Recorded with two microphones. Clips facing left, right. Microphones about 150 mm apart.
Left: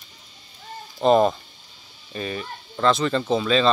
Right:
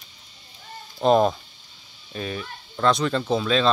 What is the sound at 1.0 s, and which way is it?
Speech, centre (ahead or behind).